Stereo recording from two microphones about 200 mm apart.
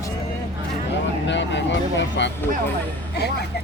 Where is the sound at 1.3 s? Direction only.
65° left (ahead or behind).